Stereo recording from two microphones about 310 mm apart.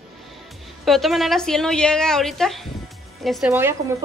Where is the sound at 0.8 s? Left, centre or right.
Centre.